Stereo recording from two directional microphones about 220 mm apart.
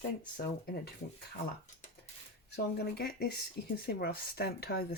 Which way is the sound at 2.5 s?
50° left (ahead or behind).